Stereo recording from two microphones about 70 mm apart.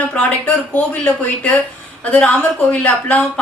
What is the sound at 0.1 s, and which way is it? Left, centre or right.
A woman's voice, left.